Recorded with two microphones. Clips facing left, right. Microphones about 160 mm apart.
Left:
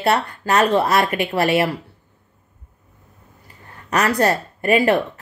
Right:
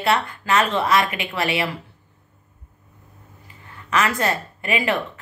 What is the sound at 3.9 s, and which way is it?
Speech, 40° left (ahead or behind).